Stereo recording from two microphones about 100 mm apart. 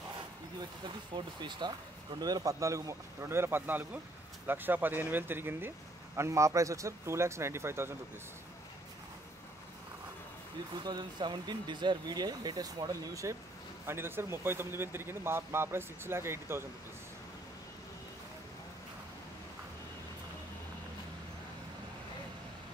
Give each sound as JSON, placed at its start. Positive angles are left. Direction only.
{"t": 0.8, "sound": "speech", "side_deg": -50}
{"t": 10.8, "sound": "speech", "side_deg": -45}